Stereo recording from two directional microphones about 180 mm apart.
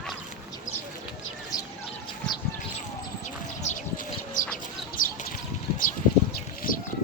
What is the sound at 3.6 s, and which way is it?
Bird, 40° left (ahead or behind).